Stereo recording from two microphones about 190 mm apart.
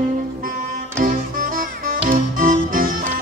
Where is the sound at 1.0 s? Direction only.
45° right (ahead or behind).